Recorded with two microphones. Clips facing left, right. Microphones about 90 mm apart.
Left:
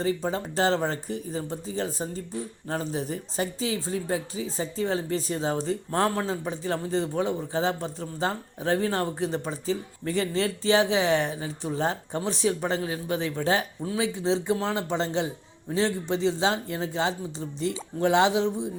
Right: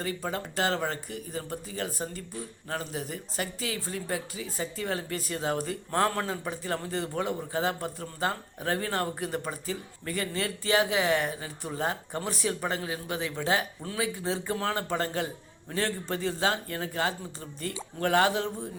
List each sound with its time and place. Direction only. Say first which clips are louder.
0.0 s speech: left 6 dB; 25° left (ahead or behind)
13.8 s speech: left 5 dB; 20° left (ahead or behind)